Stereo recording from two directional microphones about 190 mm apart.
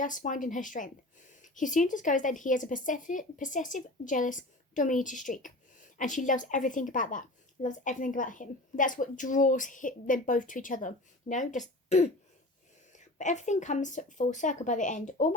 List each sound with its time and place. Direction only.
0.0 s a woman's voice: 45° left (ahead or behind)
13.1 s speech: 40° left (ahead or behind)